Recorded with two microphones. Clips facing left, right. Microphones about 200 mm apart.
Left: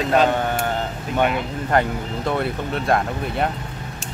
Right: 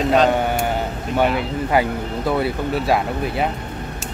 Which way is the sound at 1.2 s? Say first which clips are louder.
Right 2 dB; 5° right (ahead or behind).